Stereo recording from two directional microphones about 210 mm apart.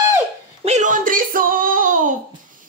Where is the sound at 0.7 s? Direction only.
35° right (ahead or behind).